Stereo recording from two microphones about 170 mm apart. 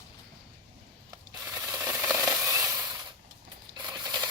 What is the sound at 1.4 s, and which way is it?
Rub, 10° right (ahead or behind).